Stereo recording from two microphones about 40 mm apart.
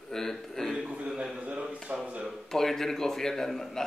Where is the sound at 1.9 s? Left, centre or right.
Right.